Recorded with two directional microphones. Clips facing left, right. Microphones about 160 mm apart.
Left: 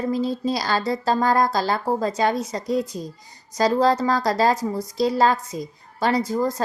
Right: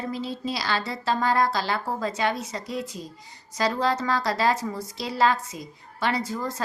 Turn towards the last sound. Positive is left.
turn(degrees=40)  # may be behind; listen again after turning